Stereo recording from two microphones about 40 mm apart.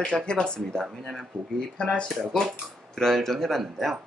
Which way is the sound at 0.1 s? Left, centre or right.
Left.